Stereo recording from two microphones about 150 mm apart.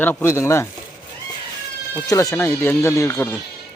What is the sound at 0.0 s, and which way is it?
Speech, 15° left (ahead or behind).